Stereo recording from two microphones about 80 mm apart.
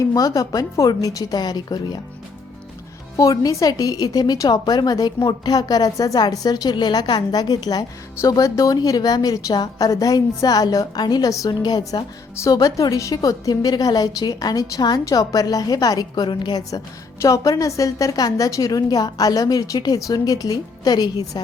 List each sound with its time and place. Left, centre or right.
0.0 s a woman's voice: left
3.2 s a woman's voice: left
8.3 s a woman's voice: left
11.4 s a woman's voice: left
16.1 s a woman's voice: left
17.2 s a woman's voice: left